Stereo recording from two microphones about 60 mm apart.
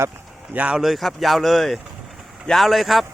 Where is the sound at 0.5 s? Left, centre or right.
Right.